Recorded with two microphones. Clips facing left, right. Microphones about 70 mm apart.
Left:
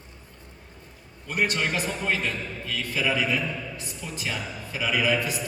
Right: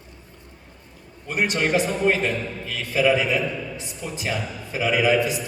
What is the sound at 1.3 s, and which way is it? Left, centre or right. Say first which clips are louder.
A man's voice: right 4 dB; right.